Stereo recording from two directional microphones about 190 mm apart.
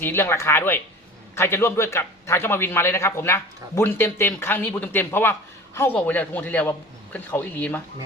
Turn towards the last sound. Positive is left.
turn(degrees=10)  # may be behind; listen again after turning